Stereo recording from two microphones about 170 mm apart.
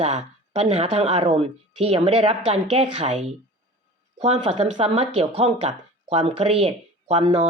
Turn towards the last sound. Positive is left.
turn(degrees=-40)  # may be behind; listen again after turning